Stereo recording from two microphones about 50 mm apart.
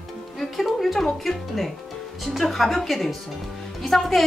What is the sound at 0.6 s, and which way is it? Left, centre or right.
A woman's voice, centre.